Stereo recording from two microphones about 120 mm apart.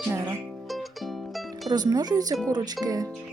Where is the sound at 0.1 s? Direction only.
20° right (ahead or behind).